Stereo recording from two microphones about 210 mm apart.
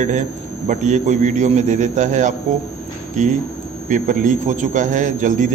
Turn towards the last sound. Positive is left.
turn(degrees=-35)  # may be behind; listen again after turning